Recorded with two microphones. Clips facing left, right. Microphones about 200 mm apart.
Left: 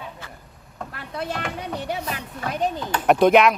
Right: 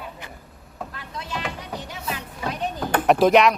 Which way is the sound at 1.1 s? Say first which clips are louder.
Left 5 dB; 55° left (ahead or behind).